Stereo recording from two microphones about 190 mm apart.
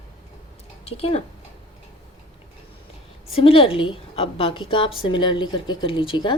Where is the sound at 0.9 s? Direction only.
30° left (ahead or behind).